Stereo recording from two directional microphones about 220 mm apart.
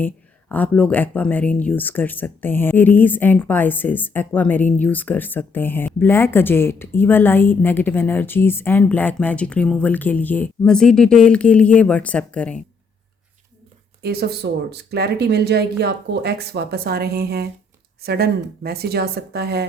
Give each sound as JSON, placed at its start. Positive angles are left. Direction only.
{"t": 0.0, "sound": "speech", "side_deg": 5}
{"t": 14.0, "sound": "speech", "side_deg": -45}